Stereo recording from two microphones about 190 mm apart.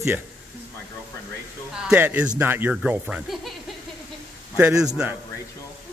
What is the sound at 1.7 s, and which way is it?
Speech, 5° right (ahead or behind).